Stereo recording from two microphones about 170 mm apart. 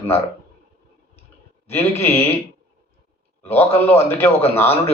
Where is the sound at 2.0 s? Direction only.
15° left (ahead or behind).